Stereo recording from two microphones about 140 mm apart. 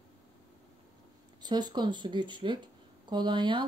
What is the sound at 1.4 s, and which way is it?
Speech, 30° right (ahead or behind).